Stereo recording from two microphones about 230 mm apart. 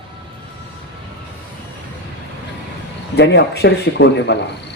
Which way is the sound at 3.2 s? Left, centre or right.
Left.